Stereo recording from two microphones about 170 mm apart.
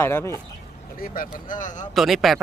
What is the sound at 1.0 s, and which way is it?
Speech, 55° left (ahead or behind).